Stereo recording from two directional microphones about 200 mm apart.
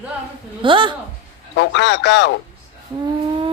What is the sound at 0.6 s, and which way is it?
Speech, 25° right (ahead or behind).